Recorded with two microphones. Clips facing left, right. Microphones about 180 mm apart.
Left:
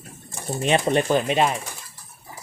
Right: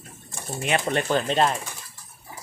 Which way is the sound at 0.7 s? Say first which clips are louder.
Left 4 dB; 20° left (ahead or behind).